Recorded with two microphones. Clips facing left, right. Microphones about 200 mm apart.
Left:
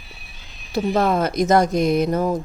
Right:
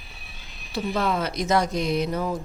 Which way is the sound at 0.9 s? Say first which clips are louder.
Left 6 dB; 50° left (ahead or behind).